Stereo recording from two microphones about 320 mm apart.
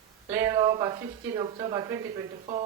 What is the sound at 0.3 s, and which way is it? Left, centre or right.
A man's voice, centre.